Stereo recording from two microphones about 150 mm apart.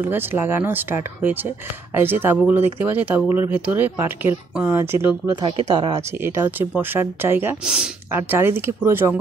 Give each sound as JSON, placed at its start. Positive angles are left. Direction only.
{"t": 0.1, "sound": "speech", "side_deg": -15}
{"t": 5.4, "sound": "speech", "side_deg": -35}
{"t": 5.9, "sound": "speech", "side_deg": -15}
{"t": 7.6, "sound": "speech", "side_deg": -5}
{"t": 8.1, "sound": "speech", "side_deg": -15}